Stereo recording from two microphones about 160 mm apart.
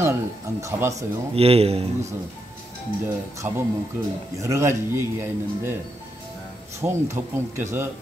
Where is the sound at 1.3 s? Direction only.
40° right (ahead or behind).